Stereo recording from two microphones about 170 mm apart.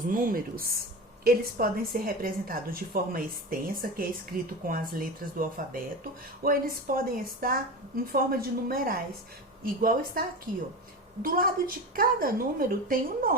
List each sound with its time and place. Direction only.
0.0 s a woman's voice: 55° right (ahead or behind)